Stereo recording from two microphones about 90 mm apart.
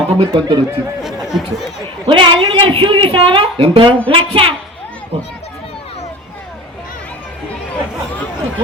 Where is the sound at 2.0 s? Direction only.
70° right (ahead or behind); by 4.5 s 90° right.